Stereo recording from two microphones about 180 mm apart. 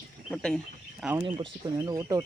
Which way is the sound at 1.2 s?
30° right (ahead or behind).